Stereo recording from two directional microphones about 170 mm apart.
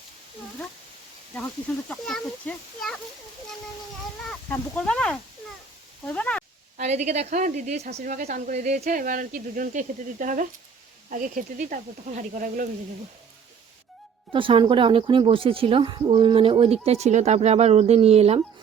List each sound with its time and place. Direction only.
1.9 s a child's voice: 5° left (ahead or behind)
4.3 s speech: 10° left (ahead or behind)
6.7 s a woman's voice: 40° right (ahead or behind)
14.3 s speech: 30° right (ahead or behind)